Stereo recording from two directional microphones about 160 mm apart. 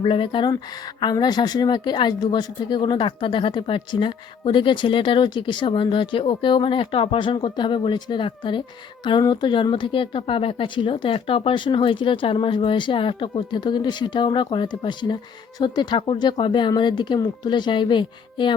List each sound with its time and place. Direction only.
0.0 s a woman's voice: 30° left (ahead or behind)